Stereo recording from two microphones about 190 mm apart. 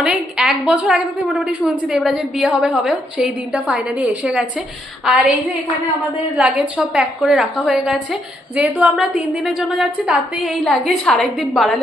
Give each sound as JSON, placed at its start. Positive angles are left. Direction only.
{"t": 0.0, "sound": "a woman's voice", "side_deg": -5}
{"t": 6.3, "sound": "a woman's voice", "side_deg": -5}